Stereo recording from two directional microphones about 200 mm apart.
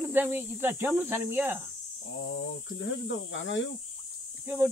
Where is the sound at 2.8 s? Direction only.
70° left (ahead or behind).